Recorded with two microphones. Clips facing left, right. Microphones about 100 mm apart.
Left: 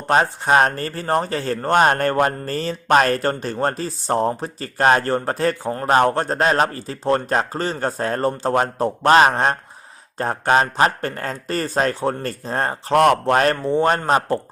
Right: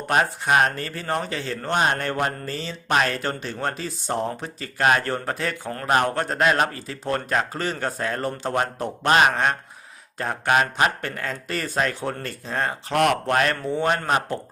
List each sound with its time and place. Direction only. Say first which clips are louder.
0.1 s speech: left 4 dB; 30° left (ahead or behind)